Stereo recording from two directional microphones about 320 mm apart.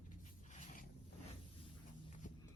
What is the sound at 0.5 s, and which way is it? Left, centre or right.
Zipper, left.